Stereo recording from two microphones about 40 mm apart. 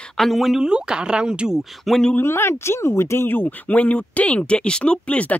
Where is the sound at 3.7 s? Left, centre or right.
Left.